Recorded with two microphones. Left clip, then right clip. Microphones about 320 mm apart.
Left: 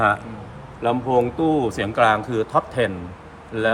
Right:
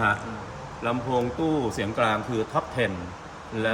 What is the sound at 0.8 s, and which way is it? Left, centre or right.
A man's voice, centre.